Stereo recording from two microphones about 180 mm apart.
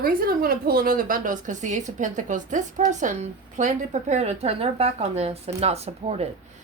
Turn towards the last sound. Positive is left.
turn(degrees=-35)  # may be behind; listen again after turning